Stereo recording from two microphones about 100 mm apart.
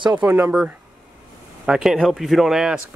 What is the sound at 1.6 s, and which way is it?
Speech, 5° right (ahead or behind).